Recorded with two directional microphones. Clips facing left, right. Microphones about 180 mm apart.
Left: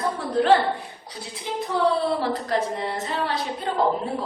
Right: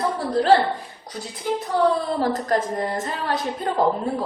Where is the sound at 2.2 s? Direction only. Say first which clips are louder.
Right 2 dB; 45° right (ahead or behind).